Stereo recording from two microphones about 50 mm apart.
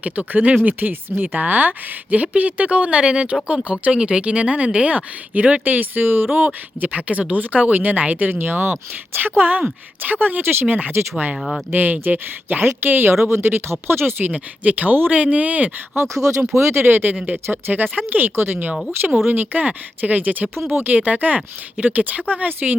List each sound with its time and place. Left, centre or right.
0.0 s a woman's voice: right
6.3 s a woman's voice: right
8.3 s a woman's voice: right
11.3 s speech: centre
11.7 s a woman's voice: right
14.6 s a woman's voice: right
16.6 s a woman's voice: right